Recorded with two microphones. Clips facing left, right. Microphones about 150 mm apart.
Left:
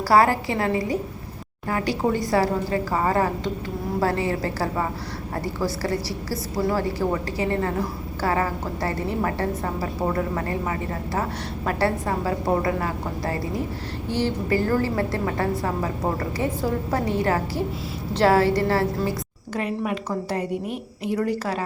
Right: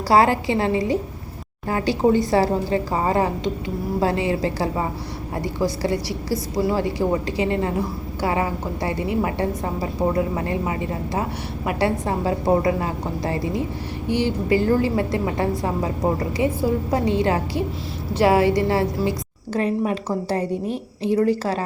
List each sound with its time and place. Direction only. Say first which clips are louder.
0.1 s a woman's voice: right 2 dB; 25° right (ahead or behind)
16.9 s a woman's voice: right 1 dB; 20° right (ahead or behind)
19.5 s a woman's voice: right 4 dB; 30° right (ahead or behind)